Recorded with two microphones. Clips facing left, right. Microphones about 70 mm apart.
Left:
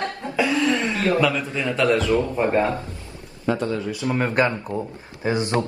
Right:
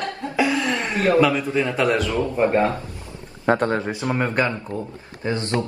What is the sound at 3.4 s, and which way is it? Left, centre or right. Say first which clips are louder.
Speech: right 4 dB; right.